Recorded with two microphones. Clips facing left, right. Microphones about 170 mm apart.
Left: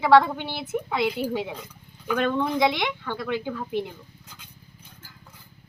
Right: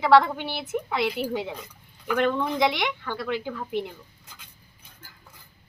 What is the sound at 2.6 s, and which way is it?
Speech, 15° left (ahead or behind).